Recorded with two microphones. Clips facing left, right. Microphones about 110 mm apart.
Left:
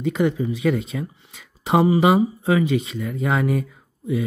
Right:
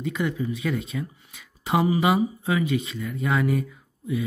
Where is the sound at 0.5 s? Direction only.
30° left (ahead or behind).